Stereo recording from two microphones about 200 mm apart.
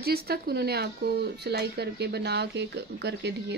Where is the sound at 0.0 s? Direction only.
50° right (ahead or behind).